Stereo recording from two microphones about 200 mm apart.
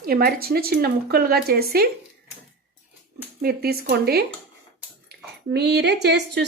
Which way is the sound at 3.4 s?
50° right (ahead or behind).